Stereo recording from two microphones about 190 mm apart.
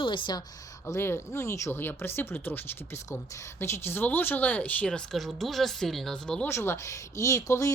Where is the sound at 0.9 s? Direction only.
15° left (ahead or behind).